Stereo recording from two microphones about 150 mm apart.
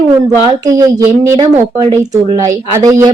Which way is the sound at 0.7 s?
25° right (ahead or behind).